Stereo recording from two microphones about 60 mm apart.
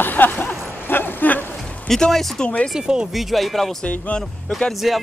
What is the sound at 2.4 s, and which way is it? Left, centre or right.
Speech, left.